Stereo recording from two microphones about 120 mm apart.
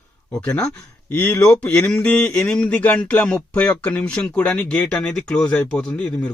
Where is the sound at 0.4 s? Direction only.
10° left (ahead or behind).